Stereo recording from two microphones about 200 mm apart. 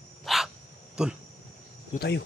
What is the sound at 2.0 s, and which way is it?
Speech, 60° left (ahead or behind).